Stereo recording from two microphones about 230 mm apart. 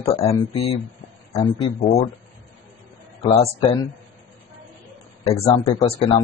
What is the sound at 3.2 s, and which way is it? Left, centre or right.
Speech, left.